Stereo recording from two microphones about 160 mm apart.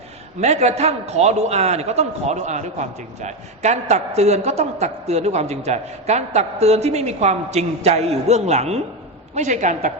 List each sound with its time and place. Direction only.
0.3 s a man's voice: 45° right (ahead or behind)